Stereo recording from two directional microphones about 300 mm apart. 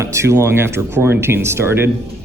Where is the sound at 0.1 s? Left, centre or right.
Centre.